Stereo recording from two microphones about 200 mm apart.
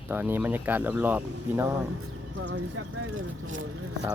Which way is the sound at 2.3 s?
75° right (ahead or behind).